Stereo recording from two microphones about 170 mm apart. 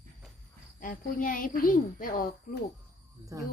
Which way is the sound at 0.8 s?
50° left (ahead or behind).